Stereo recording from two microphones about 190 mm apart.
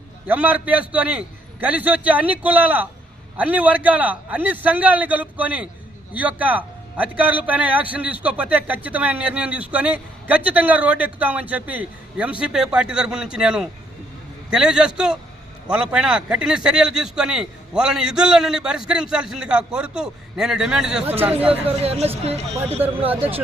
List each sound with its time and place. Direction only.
0.3 s a man's voice: 10° right (ahead or behind)
21.4 s speech: 30° right (ahead or behind)